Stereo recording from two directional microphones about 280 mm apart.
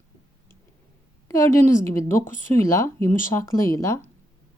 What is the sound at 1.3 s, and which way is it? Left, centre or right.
Speech, centre.